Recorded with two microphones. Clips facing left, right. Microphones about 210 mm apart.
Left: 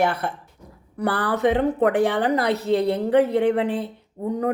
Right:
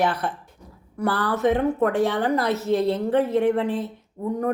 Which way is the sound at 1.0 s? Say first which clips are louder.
Left 1 dB; 15° left (ahead or behind).